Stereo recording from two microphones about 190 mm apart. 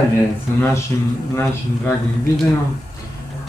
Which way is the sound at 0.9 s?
15° left (ahead or behind).